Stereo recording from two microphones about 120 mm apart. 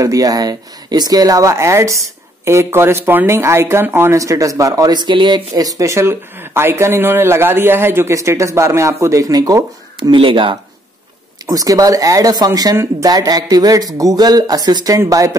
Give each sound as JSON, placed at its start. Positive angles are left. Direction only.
{"t": 0.0, "sound": "speech", "side_deg": -30}
{"t": 5.5, "sound": "speech", "side_deg": -30}
{"t": 9.9, "sound": "speech", "side_deg": -45}
{"t": 11.4, "sound": "speech", "side_deg": -30}